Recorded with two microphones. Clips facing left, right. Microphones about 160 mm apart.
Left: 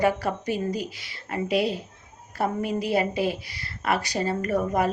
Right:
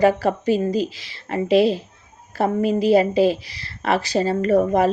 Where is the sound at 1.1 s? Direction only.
25° right (ahead or behind).